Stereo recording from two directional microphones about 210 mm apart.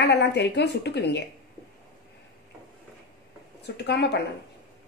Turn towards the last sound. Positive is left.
turn(degrees=55)  # may be behind; listen again after turning